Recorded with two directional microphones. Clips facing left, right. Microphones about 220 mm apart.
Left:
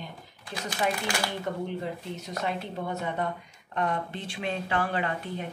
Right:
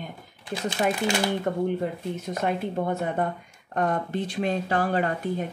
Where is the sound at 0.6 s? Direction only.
25° right (ahead or behind).